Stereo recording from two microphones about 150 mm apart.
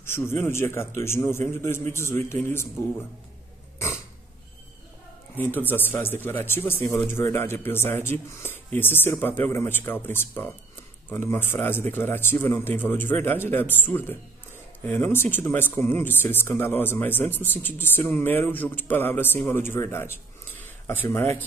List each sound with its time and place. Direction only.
0.5 s speech: 15° left (ahead or behind)
5.3 s speech: 15° left (ahead or behind)